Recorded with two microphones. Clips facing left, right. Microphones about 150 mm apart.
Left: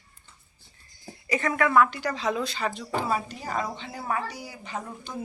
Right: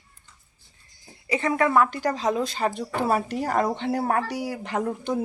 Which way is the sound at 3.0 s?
70° right (ahead or behind).